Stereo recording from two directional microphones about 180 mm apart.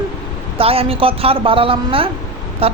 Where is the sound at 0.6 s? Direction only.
30° right (ahead or behind).